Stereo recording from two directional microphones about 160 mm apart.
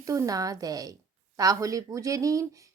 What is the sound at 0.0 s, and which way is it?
A woman's voice, 20° right (ahead or behind).